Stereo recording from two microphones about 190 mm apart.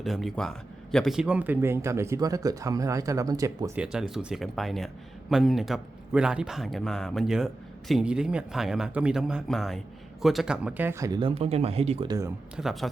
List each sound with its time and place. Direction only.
0.0 s speech: centre (ahead or behind); by 3.7 s 20° right (ahead or behind)
3.8 s speech: 5° right (ahead or behind); by 12.1 s 30° right (ahead or behind)
12.5 s speech: centre (ahead or behind)